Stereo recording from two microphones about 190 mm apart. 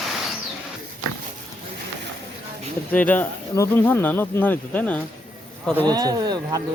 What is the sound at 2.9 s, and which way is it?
Speech, 10° left (ahead or behind).